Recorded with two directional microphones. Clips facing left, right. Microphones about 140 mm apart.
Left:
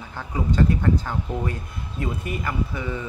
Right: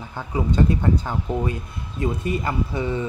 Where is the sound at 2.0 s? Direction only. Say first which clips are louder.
Right 5 dB; 30° right (ahead or behind).